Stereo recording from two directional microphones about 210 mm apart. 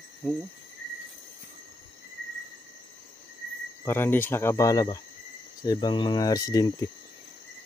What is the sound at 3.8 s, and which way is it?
Speech, 10° left (ahead or behind).